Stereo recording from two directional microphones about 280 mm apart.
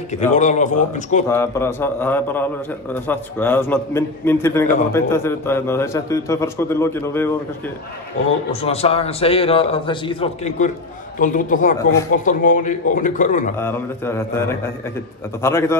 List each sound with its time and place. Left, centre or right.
0.1 s a man's voice: left
1.3 s a man's voice: centre
8.5 s a man's voice: left
13.6 s a man's voice: centre